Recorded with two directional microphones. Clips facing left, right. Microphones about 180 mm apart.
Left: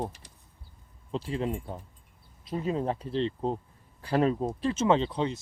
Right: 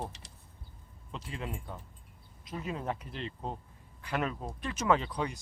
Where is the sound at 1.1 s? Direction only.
30° left (ahead or behind).